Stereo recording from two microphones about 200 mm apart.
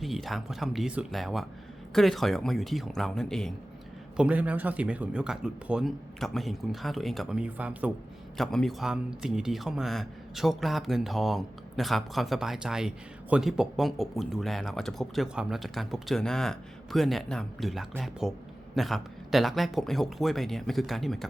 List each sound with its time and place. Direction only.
0.0 s speech: centre (ahead or behind)